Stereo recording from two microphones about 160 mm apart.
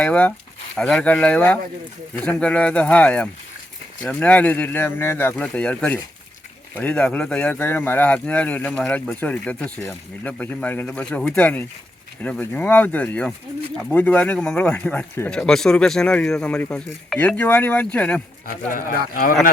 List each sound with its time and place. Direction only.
0.0 s speech: 10° left (ahead or behind)
18.7 s speech: 60° left (ahead or behind)